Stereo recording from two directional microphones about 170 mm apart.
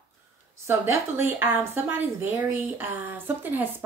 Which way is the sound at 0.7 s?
10° right (ahead or behind).